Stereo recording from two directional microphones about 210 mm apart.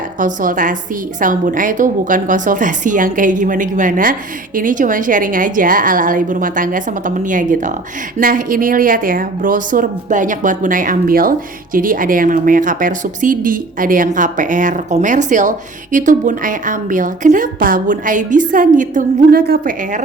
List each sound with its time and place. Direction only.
0.2 s a woman's voice: 40° right (ahead or behind)